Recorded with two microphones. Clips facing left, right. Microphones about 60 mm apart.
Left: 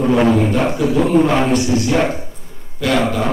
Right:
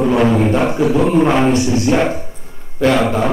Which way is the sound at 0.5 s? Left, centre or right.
Right.